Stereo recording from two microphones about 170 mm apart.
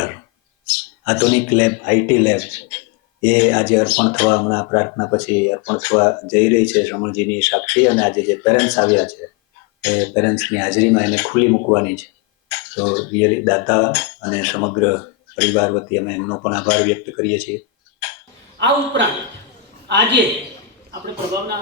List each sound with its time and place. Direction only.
0.7 s speech: 10° left (ahead or behind)
19.9 s a man's voice: 90° right